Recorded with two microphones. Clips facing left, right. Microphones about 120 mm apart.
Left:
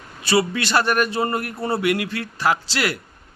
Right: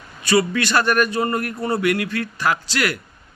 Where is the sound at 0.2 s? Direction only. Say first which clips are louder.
Right 2 dB; 30° left (ahead or behind).